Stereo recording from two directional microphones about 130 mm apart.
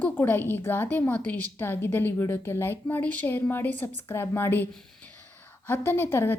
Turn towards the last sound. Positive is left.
turn(degrees=15)  # may be behind; listen again after turning